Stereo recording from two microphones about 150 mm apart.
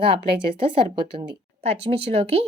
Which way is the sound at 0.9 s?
45° right (ahead or behind).